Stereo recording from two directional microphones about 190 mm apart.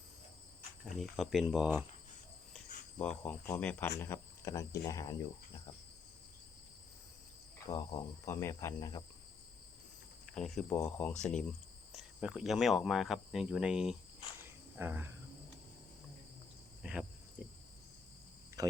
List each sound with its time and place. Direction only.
0.9 s speech: centre (ahead or behind)
3.0 s speech: 5° left (ahead or behind)
7.7 s speech: 15° left (ahead or behind)
10.3 s speech: 5° left (ahead or behind)
14.8 s cricket: 10° right (ahead or behind)
16.8 s speech: 5° right (ahead or behind)
18.6 s cricket: 20° right (ahead or behind)